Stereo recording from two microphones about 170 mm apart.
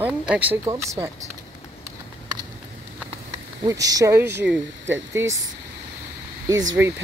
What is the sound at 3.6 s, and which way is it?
Speech, 20° right (ahead or behind).